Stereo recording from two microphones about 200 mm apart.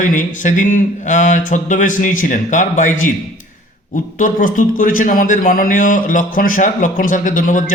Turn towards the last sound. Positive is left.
turn(degrees=40)  # may be behind; listen again after turning